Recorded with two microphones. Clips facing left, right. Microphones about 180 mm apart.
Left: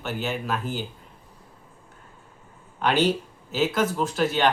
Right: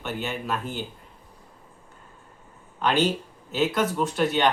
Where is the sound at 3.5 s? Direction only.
Centre (ahead or behind).